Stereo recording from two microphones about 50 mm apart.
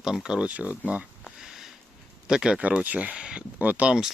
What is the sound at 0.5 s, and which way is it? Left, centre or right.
Speech, right.